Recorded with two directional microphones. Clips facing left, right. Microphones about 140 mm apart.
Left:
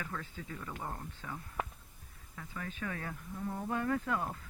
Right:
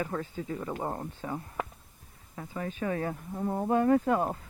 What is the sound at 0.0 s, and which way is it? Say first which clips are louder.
Speech: right 9 dB; 30° right (ahead or behind).